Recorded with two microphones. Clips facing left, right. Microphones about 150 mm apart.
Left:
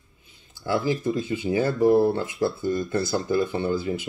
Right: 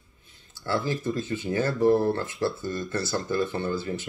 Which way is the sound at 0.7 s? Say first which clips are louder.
Left 3 dB; 15° left (ahead or behind).